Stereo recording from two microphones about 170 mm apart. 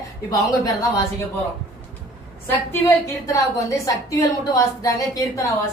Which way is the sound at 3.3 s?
20° left (ahead or behind).